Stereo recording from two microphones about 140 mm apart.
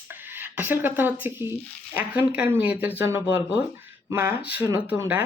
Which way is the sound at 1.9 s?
15° right (ahead or behind).